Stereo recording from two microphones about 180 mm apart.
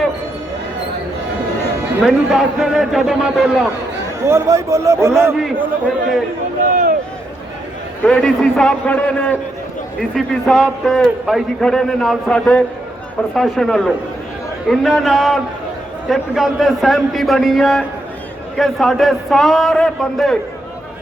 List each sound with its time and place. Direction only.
2.0 s a man's voice: 5° right (ahead or behind)
4.2 s a man's voice: 15° right (ahead or behind)
6.6 s a sound: 50° right (ahead or behind)
8.0 s a man's voice: 5° left (ahead or behind)